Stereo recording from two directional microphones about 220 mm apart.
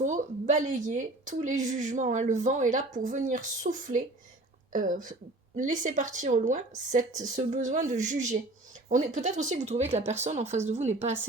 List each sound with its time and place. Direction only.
0.0 s a woman's voice: 35° right (ahead or behind)